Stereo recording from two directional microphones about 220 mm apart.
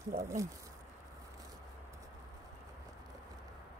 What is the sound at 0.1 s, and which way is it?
Speech, 15° right (ahead or behind).